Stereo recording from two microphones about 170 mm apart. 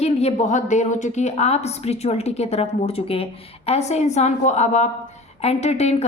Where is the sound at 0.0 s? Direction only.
40° left (ahead or behind).